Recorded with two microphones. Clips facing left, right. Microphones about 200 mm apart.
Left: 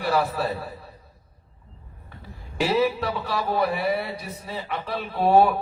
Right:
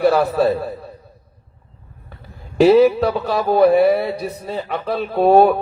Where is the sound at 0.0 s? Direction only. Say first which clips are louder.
Right 9 dB; 40° right (ahead or behind).